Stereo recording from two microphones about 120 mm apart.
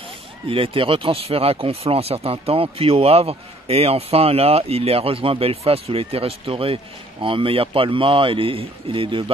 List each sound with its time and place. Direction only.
0.5 s speech: 50° right (ahead or behind)